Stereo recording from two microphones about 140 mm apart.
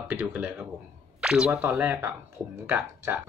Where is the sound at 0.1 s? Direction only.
15° right (ahead or behind).